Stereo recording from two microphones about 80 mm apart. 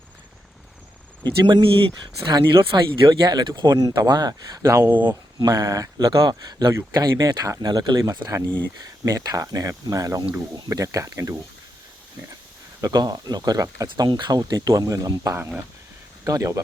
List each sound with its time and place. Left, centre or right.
1.2 s speech: right
3.2 s speech: right
4.9 s speech: right
5.5 s speech: right
6.1 s speech: right
7.6 s speech: right
12.8 s speech: right
14.0 s speech: right